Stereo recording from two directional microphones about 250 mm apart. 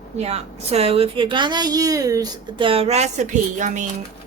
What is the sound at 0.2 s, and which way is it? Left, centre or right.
A woman's voice, right.